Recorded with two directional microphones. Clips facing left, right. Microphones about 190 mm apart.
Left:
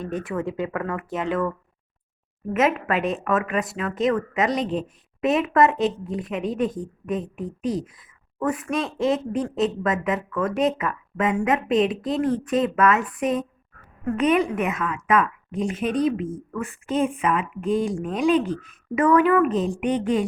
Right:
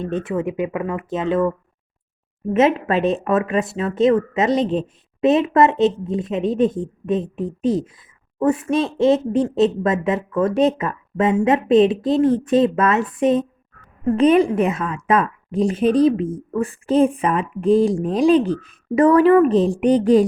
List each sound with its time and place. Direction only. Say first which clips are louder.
0.0 s a woman's voice: right 5 dB; 25° right (ahead or behind)